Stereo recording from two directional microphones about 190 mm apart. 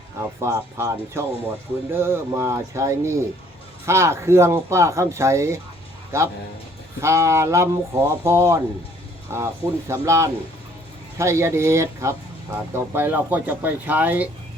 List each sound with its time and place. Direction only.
0.2 s a man's voice: 15° right (ahead or behind)